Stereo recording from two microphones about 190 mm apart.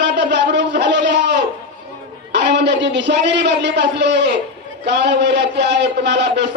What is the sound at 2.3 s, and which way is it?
A man's voice, 65° right (ahead or behind).